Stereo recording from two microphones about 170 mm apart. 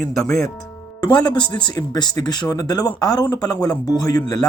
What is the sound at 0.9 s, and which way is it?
Music, 20° left (ahead or behind).